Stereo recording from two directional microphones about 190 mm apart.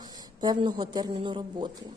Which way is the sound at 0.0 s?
20° right (ahead or behind).